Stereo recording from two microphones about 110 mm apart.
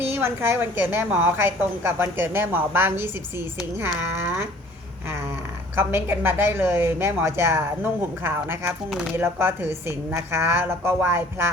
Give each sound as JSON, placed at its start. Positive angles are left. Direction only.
{"t": 0.0, "sound": "a woman's voice", "side_deg": -20}
{"t": 5.7, "sound": "a woman's voice", "side_deg": -20}
{"t": 8.9, "sound": "speech", "side_deg": 0}
{"t": 9.1, "sound": "a woman's voice", "side_deg": -20}